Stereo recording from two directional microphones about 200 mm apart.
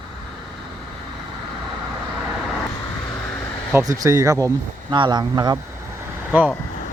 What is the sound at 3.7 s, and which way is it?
Speech, 15° right (ahead or behind).